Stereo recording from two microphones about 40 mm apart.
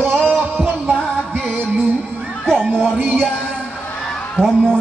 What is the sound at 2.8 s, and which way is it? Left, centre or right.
Music, right.